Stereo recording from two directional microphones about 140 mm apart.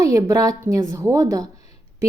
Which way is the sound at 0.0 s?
25° right (ahead or behind).